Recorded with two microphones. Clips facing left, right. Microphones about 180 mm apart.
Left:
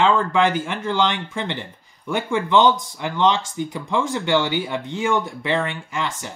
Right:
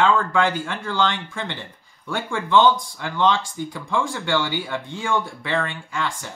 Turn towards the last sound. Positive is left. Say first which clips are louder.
# left 1 dB
turn(degrees=20)  # may be behind; listen again after turning